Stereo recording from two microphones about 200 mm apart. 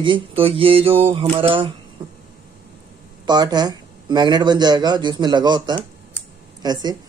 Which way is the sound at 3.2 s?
20° right (ahead or behind).